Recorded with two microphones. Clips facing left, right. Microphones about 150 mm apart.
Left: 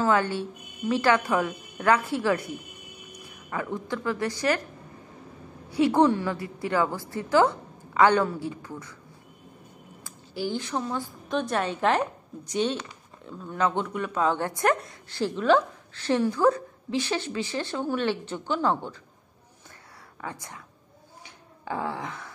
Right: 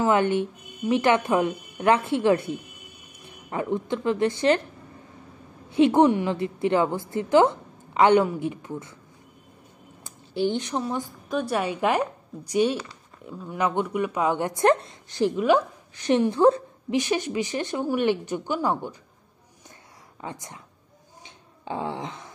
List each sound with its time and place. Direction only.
0.0 s a woman's voice: 20° right (ahead or behind)
5.7 s a woman's voice: 20° right (ahead or behind)
10.0 s speech: 20° right (ahead or behind)
20.2 s a woman's voice: 20° right (ahead or behind)
21.6 s a woman's voice: 20° right (ahead or behind)